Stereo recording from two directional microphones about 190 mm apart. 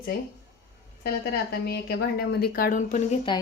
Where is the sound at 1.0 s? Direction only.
55° left (ahead or behind); by 3.2 s 40° left (ahead or behind).